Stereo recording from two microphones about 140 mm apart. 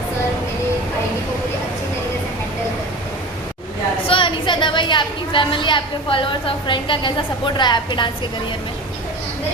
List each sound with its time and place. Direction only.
4.1 s a woman's voice: 35° left (ahead or behind)